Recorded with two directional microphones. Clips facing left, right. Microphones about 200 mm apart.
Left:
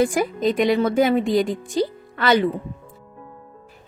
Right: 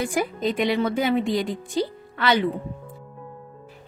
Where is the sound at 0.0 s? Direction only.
45° left (ahead or behind).